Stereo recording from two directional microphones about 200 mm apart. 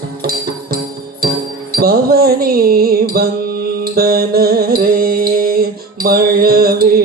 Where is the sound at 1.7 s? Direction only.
50° right (ahead or behind).